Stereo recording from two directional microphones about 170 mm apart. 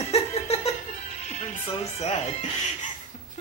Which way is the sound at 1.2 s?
40° left (ahead or behind).